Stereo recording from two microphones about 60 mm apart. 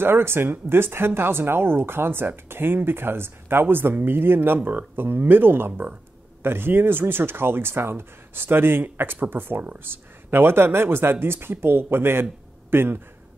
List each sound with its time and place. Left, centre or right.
0.0 s speech: right